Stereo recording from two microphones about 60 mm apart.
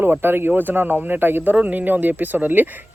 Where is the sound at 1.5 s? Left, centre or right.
Right.